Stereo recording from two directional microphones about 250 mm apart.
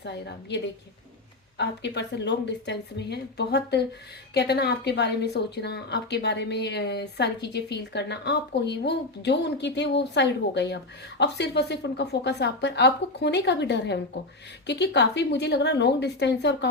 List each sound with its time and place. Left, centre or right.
0.0 s a woman's voice: left